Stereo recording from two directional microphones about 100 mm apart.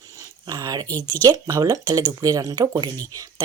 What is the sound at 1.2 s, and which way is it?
Speech, 40° right (ahead or behind).